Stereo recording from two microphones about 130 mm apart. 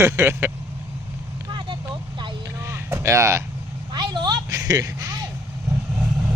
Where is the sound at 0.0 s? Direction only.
20° right (ahead or behind).